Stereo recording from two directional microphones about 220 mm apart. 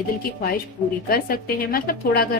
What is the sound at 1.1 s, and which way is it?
A woman's voice, 40° left (ahead or behind).